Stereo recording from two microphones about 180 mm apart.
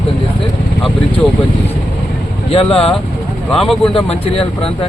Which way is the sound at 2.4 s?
30° left (ahead or behind).